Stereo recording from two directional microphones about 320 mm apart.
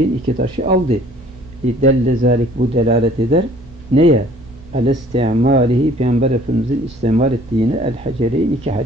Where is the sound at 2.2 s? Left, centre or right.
Right.